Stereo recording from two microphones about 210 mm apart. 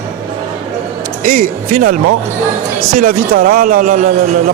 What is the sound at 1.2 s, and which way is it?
Speech, 40° right (ahead or behind).